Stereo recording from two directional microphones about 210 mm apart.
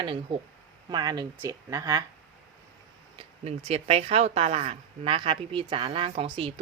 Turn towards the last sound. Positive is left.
turn(degrees=-25)  # may be behind; listen again after turning